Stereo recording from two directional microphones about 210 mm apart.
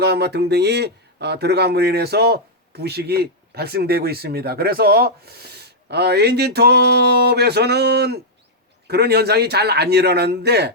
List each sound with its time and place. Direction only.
0.0 s speech: 50° right (ahead or behind)